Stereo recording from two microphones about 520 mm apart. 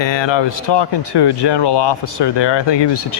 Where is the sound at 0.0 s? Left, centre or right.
Left.